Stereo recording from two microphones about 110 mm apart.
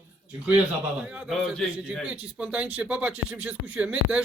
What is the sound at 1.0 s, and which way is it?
Speech, 10° right (ahead or behind).